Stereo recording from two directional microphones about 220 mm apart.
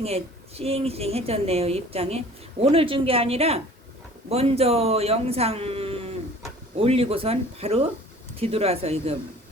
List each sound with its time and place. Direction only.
0.0 s a woman's voice: 30° right (ahead or behind)